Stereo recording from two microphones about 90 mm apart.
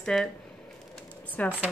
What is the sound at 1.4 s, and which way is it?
Speech, 15° left (ahead or behind).